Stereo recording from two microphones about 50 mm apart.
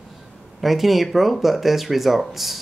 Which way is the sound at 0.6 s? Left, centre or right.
Centre.